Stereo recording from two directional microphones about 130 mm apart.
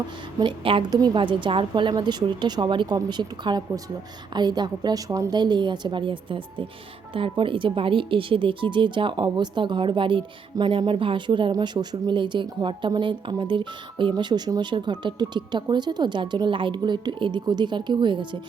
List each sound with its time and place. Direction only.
0.3 s speech: 40° right (ahead or behind)